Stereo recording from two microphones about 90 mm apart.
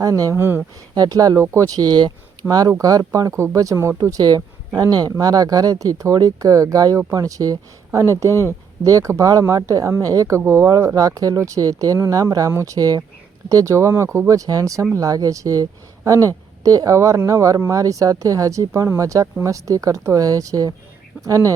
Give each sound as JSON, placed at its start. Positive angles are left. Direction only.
{"t": 0.0, "sound": "speech", "side_deg": -40}
{"t": 4.2, "sound": "speech", "side_deg": -45}
{"t": 8.3, "sound": "speech", "side_deg": 30}
{"t": 8.8, "sound": "speech", "side_deg": -40}
{"t": 12.5, "sound": "speech", "side_deg": -30}
{"t": 12.7, "sound": "speech", "side_deg": -45}